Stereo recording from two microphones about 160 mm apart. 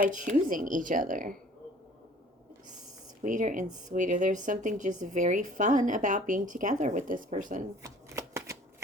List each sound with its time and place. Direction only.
0.0 s speech: 55° right (ahead or behind)
3.2 s speech: 55° right (ahead or behind)
7.8 s shuffling cards: 20° right (ahead or behind)